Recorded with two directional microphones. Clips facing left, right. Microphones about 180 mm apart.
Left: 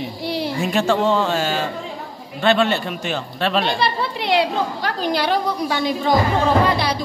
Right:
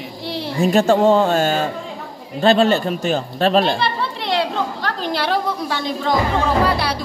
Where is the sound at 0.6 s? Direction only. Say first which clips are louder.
Right 6 dB; 40° right (ahead or behind).